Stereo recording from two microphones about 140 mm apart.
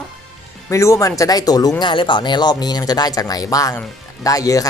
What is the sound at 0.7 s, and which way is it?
Speech, 20° left (ahead or behind).